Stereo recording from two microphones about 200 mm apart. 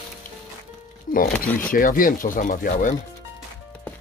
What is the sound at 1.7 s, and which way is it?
Speech, 45° left (ahead or behind).